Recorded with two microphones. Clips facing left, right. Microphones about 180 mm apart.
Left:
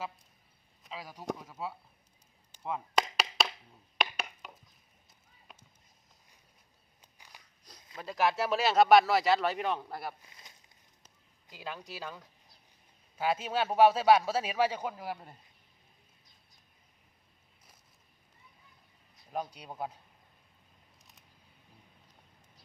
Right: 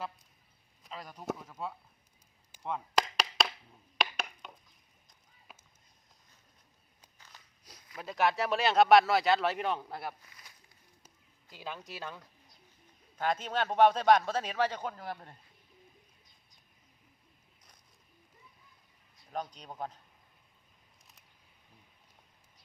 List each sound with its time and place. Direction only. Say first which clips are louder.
0.9 s a sound: even; centre (ahead or behind)
2.6 s chop: even; centre (ahead or behind)
3.2 s wood block: even; centre (ahead or behind)
3.9 s a sound: even; centre (ahead or behind)
7.3 s walk: left 1 dB; 15° left (ahead or behind)
7.9 s speech: even; centre (ahead or behind)
10.2 s a sound: left 1 dB; 25° left (ahead or behind)
11.5 s speech: left 1 dB; centre (ahead or behind)
19.3 s speech: left 1 dB; 10° left (ahead or behind)